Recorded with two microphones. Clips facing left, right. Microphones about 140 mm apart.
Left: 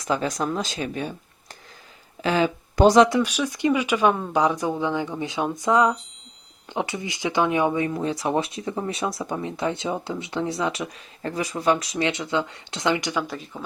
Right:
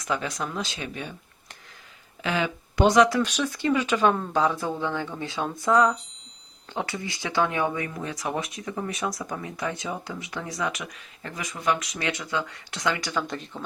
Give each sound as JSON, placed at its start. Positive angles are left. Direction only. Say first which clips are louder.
{"t": 0.0, "sound": "speech", "louder": "left 5 dB", "side_deg": 35}
{"t": 2.2, "sound": "speech", "louder": "left 5 dB", "side_deg": 35}
{"t": 3.1, "sound": "speech", "louder": "left 2 dB", "side_deg": 10}
{"t": 13.2, "sound": "speech", "louder": "left 1 dB", "side_deg": 5}